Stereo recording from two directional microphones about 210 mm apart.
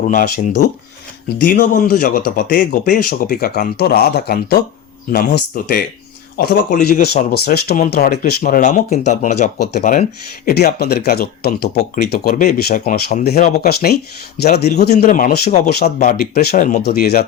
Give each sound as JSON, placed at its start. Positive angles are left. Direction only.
{"t": 0.0, "sound": "speech", "side_deg": 35}
{"t": 12.3, "sound": "speech", "side_deg": 35}
{"t": 13.4, "sound": "speech", "side_deg": 45}
{"t": 15.0, "sound": "speech", "side_deg": 40}
{"t": 16.0, "sound": "speech", "side_deg": 45}